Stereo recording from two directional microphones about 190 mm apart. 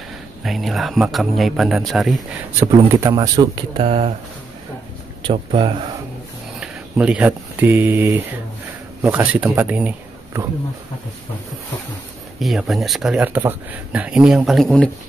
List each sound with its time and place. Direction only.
0.4 s speech: centre (ahead or behind)
2.9 s speech: 20° right (ahead or behind)
5.2 s speech: 25° right (ahead or behind)
6.6 s speech: 5° right (ahead or behind)
12.4 s speech: centre (ahead or behind)